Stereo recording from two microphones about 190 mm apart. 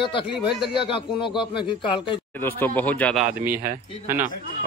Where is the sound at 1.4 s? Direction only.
25° left (ahead or behind).